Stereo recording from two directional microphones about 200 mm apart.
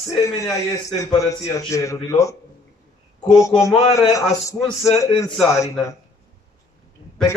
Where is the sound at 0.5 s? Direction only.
15° left (ahead or behind).